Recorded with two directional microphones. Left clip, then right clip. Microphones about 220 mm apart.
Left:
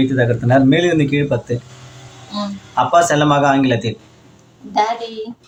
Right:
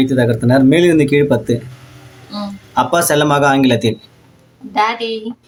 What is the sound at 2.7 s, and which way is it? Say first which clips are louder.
Speech: even; 65° right (ahead or behind).